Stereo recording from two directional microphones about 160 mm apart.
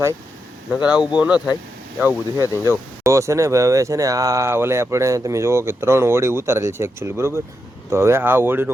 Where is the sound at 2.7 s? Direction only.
20° right (ahead or behind).